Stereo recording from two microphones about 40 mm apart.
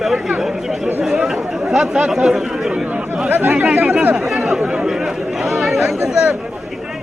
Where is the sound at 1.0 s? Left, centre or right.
Centre.